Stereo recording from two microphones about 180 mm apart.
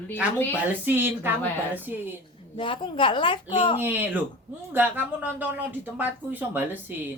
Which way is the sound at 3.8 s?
10° right (ahead or behind).